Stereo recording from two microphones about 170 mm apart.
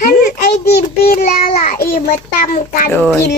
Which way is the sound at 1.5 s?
50° left (ahead or behind).